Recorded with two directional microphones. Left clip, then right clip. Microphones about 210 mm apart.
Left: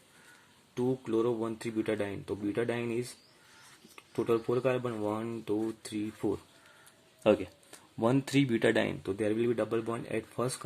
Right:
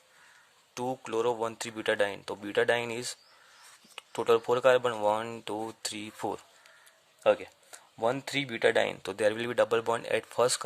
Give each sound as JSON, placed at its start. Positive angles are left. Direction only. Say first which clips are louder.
{"t": 0.7, "sound": "speech", "louder": "left 1 dB", "side_deg": -40}
{"t": 7.3, "sound": "speech", "louder": "right 1 dB", "side_deg": -20}
{"t": 9.0, "sound": "speech", "louder": "right 2 dB", "side_deg": -45}